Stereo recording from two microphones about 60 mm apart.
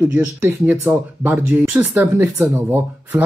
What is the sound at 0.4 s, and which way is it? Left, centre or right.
Speech, right.